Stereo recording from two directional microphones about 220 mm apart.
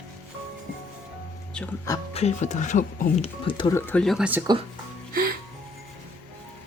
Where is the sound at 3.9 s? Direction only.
5° left (ahead or behind).